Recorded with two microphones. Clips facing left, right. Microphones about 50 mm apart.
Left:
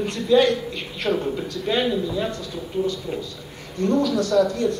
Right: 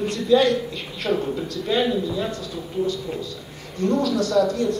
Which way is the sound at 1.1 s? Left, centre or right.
Centre.